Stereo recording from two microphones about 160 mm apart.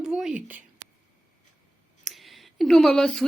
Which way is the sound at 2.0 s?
Centre (ahead or behind).